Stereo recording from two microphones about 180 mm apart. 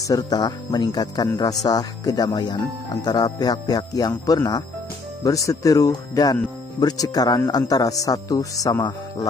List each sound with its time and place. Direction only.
0.0 s speech: 20° left (ahead or behind)